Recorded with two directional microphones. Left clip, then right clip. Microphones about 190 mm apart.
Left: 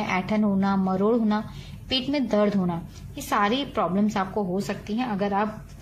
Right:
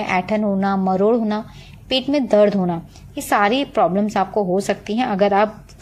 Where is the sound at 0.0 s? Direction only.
35° right (ahead or behind).